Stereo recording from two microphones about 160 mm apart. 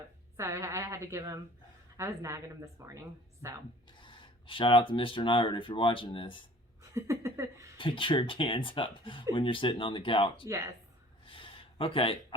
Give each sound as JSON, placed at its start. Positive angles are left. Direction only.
{"t": 0.3, "sound": "a woman's voice", "side_deg": -20}
{"t": 4.0, "sound": "speech", "side_deg": 30}
{"t": 6.9, "sound": "a sound", "side_deg": -20}
{"t": 7.8, "sound": "speech", "side_deg": 30}
{"t": 10.4, "sound": "a woman's voice", "side_deg": -20}
{"t": 11.3, "sound": "a sound", "side_deg": 35}